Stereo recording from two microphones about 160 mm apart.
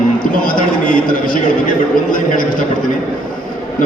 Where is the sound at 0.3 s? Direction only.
60° left (ahead or behind).